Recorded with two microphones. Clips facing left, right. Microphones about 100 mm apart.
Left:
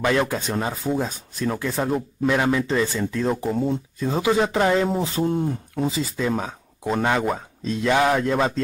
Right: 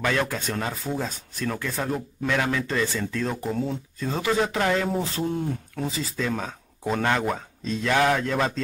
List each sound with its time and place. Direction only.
0.0 s speech: 15° left (ahead or behind)